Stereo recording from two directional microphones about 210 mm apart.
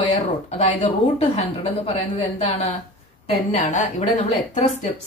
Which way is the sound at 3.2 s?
35° left (ahead or behind).